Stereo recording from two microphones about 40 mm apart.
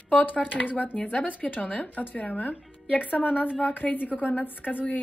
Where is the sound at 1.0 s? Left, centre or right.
Left.